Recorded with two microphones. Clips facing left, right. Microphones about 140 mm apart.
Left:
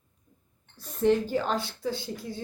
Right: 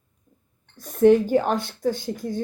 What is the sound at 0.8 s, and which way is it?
A woman's voice, 55° right (ahead or behind).